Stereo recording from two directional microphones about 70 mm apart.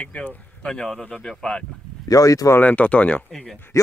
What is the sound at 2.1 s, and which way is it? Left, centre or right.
Speech, left.